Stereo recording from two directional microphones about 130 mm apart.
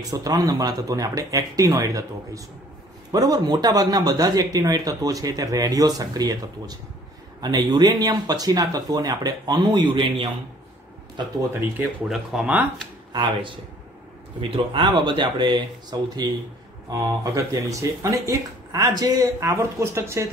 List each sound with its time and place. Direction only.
0.1 s speech: 30° right (ahead or behind)
12.1 s speech: centre (ahead or behind)
13.1 s speech: 40° right (ahead or behind)
17.0 s speech: 25° right (ahead or behind)